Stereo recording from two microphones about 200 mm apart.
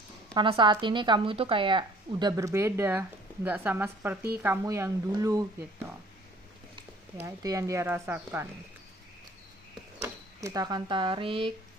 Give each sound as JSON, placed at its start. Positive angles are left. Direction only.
{"t": 0.3, "sound": "a woman's voice", "side_deg": -25}
{"t": 7.2, "sound": "speech", "side_deg": -15}
{"t": 10.0, "sound": "speech", "side_deg": -15}